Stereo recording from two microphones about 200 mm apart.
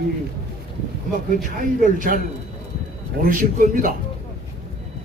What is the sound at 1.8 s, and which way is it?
A man's voice, 40° right (ahead or behind).